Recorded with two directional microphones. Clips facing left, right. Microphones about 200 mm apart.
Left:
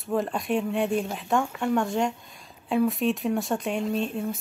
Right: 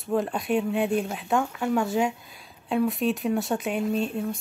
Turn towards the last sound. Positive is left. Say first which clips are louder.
# right 1 dB
turn(degrees=0)  # may be behind; listen again after turning